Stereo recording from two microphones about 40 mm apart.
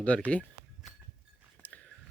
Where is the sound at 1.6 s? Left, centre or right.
Left.